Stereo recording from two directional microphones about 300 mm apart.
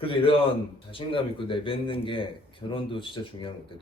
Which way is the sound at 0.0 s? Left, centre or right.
Centre.